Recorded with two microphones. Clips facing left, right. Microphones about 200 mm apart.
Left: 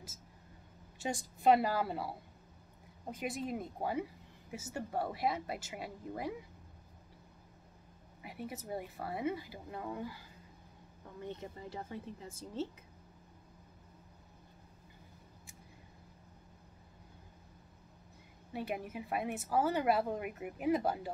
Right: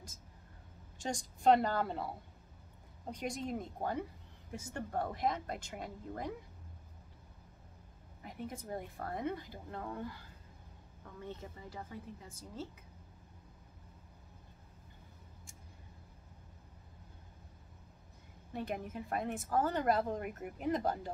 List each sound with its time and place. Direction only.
0.9 s a woman's voice: 5° left (ahead or behind)
8.2 s speech: 10° left (ahead or behind)
11.2 s speech: 20° left (ahead or behind)
18.5 s speech: 10° left (ahead or behind)